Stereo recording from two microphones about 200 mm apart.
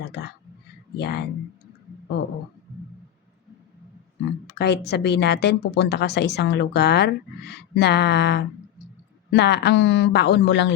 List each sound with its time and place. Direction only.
0.0 s a woman's voice: 55° left (ahead or behind)
4.4 s a woman's voice: 55° left (ahead or behind)